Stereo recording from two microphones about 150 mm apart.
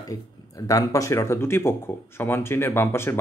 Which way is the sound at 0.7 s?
20° left (ahead or behind).